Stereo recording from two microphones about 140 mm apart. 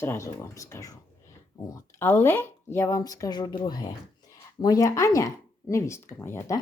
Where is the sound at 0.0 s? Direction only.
20° left (ahead or behind).